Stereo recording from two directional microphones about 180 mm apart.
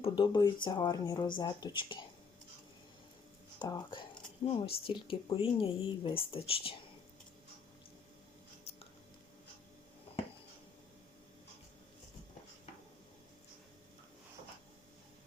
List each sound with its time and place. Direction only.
0.0 s speech: 25° left (ahead or behind)
3.6 s speech: 25° left (ahead or behind)
10.1 s a sound: 30° left (ahead or behind)